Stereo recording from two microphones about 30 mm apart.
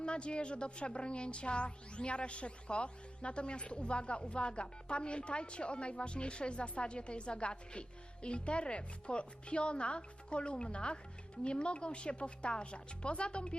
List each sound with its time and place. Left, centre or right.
0.0 s speech: left